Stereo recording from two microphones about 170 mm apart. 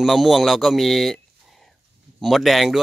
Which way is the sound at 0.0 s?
Centre (ahead or behind).